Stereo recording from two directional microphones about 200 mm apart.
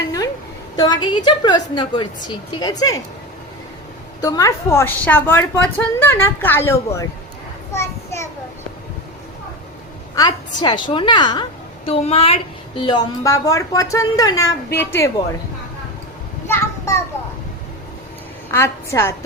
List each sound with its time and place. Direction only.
1.0 s a woman's voice: 20° left (ahead or behind)
4.2 s a woman's voice: 20° left (ahead or behind)
7.7 s a sound: 15° left (ahead or behind)
10.2 s a woman's voice: 20° left (ahead or behind)
16.5 s a sound: 10° left (ahead or behind)
18.5 s a woman's voice: 15° left (ahead or behind)